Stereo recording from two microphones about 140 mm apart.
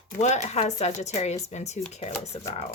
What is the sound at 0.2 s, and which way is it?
Speech, 55° left (ahead or behind).